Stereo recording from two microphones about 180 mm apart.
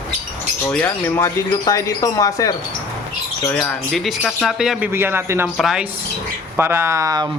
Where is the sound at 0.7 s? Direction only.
10° left (ahead or behind).